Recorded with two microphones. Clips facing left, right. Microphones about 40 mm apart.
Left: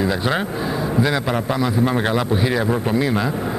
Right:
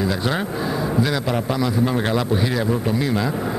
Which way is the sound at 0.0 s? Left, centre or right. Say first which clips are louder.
Left 2 dB; centre.